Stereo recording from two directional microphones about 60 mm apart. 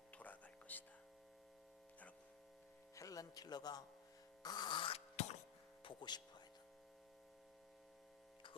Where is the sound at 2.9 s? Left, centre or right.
Left.